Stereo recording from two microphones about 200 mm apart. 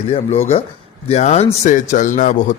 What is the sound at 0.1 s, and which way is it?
Speech, 30° left (ahead or behind).